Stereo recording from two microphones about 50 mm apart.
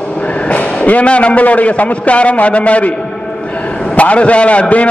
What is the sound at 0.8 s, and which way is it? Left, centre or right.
A man's voice, left.